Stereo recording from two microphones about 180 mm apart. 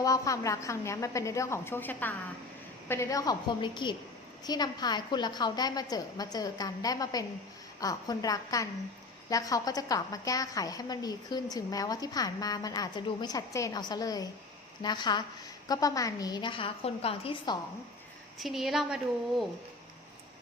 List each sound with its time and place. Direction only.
0.0 s a woman's voice: 20° left (ahead or behind)
18.3 s a woman's voice: centre (ahead or behind)